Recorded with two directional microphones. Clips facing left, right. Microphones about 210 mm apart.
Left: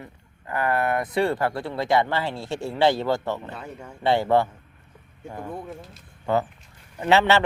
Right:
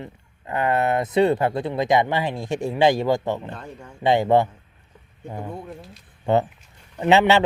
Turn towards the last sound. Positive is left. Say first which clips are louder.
# right 3 dB
turn(degrees=-15)  # may be behind; listen again after turning